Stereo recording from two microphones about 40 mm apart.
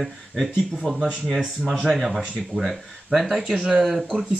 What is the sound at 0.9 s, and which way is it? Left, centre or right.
Speech, centre.